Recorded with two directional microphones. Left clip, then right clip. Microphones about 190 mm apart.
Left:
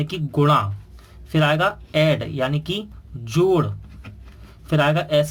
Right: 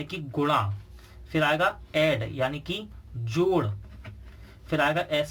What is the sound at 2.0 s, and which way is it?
Speech, 45° left (ahead or behind).